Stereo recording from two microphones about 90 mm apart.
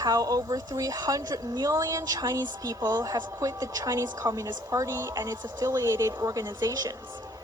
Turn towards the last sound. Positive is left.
turn(degrees=-40)  # may be behind; listen again after turning